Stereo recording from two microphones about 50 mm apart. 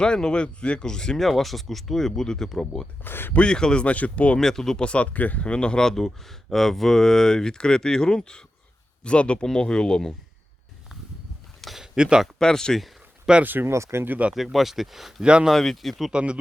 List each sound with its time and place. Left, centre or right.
0.0 s speech: centre
3.0 s speech: left
3.3 s speech: centre
4.4 s speech: centre
4.8 s speech: left
5.1 s speech: left; by 10.2 s centre
11.8 s a sound: centre
12.4 s speech: centre
13.4 s speech: right
13.7 s speech: right
14.3 s speech: centre
15.2 s speech: centre
15.4 s speech: centre
16.1 s speech: right